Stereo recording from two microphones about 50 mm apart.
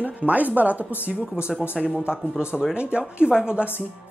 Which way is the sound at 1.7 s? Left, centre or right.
Right.